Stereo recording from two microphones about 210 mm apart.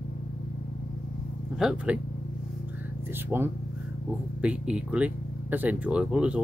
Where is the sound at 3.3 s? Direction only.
10° right (ahead or behind).